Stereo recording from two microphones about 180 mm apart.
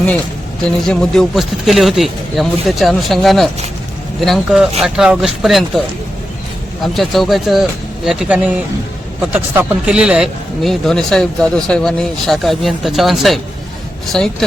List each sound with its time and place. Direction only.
0.9 s a man's voice: centre (ahead or behind)
6.8 s a man's voice: centre (ahead or behind)